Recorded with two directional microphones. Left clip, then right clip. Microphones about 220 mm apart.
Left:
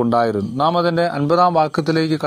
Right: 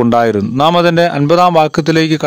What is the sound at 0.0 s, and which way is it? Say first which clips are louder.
A man's voice: right 6 dB; 30° right (ahead or behind).